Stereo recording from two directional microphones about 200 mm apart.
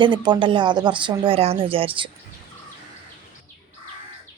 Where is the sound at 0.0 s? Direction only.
25° right (ahead or behind).